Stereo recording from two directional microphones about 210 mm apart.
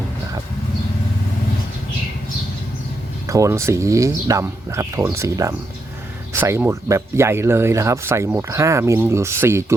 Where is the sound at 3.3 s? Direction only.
15° right (ahead or behind).